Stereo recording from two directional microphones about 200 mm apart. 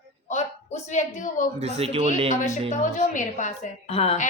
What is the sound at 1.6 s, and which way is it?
Speech, 30° right (ahead or behind).